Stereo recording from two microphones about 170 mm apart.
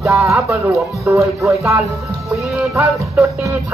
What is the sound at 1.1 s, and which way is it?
Music, centre (ahead or behind).